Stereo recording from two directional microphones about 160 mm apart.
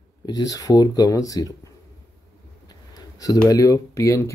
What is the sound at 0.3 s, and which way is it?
Speech, 25° left (ahead or behind).